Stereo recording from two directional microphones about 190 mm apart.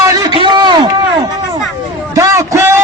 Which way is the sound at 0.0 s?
25° right (ahead or behind).